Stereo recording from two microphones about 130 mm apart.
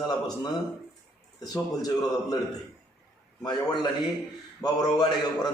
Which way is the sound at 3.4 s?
35° left (ahead or behind).